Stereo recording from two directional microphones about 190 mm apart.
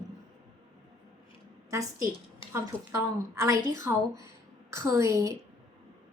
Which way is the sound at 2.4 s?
25° left (ahead or behind).